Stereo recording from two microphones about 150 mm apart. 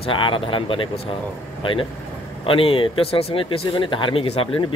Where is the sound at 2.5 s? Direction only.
35° left (ahead or behind).